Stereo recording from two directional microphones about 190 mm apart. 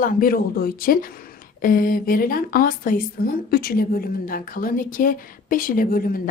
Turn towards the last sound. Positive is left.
turn(degrees=50)  # may be behind; listen again after turning